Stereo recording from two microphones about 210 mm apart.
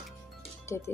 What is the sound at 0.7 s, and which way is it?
Speech, 10° left (ahead or behind).